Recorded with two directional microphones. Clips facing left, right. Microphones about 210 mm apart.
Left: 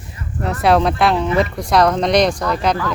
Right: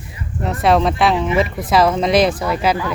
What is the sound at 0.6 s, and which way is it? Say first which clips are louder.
Speech: even; centre (ahead or behind).